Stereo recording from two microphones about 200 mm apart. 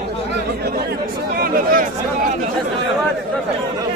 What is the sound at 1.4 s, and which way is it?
Speech, 45° right (ahead or behind).